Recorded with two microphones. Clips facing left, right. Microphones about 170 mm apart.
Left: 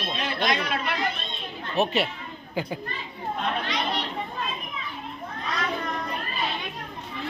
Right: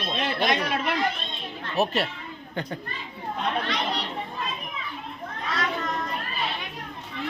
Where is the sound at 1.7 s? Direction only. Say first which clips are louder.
Left 1 dB; centre (ahead or behind).